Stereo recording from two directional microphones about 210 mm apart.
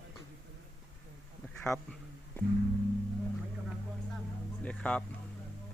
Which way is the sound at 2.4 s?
10° left (ahead or behind).